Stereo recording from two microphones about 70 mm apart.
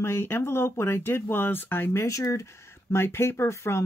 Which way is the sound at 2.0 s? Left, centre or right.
Left.